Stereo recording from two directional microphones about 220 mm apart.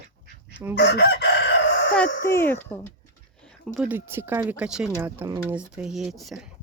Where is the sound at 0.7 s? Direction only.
50° left (ahead or behind).